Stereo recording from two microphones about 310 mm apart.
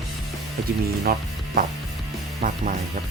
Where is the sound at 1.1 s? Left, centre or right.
Right.